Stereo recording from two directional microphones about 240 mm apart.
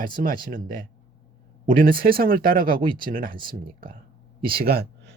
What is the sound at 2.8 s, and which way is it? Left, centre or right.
Speech, centre.